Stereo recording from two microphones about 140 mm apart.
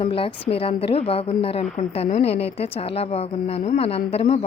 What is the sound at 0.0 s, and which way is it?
A woman's voice, 40° left (ahead or behind).